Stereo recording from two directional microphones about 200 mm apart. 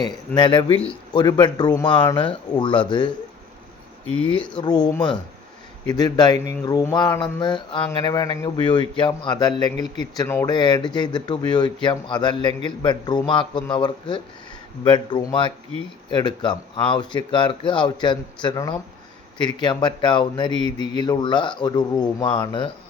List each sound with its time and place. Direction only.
0.3 s speech: 25° left (ahead or behind)
4.3 s speech: 25° left (ahead or behind)